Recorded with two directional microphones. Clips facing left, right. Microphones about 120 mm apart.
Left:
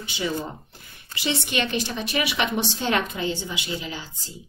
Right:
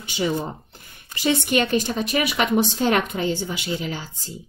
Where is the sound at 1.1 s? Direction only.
45° right (ahead or behind).